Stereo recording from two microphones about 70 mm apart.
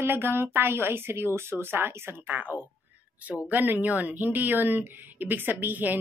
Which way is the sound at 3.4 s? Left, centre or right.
Right.